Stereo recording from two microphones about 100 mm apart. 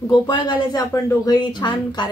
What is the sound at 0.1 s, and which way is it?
A woman's voice, 45° left (ahead or behind).